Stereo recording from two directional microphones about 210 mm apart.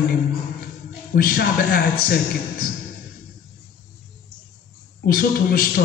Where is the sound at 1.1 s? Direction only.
45° left (ahead or behind).